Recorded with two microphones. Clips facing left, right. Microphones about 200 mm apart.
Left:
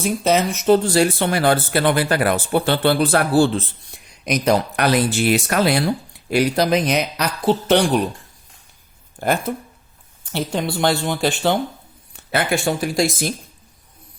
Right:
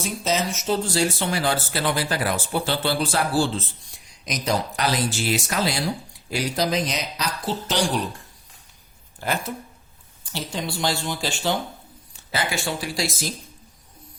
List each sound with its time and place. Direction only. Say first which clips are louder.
0.0 s speech: left 7 dB; 60° left (ahead or behind)
9.1 s speech: left 7 dB; 50° left (ahead or behind)